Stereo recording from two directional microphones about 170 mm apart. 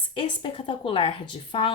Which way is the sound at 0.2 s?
30° left (ahead or behind).